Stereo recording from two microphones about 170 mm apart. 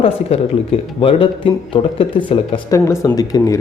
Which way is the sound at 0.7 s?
35° left (ahead or behind).